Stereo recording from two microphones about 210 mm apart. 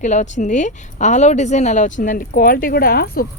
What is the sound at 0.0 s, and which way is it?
Speech, 35° left (ahead or behind).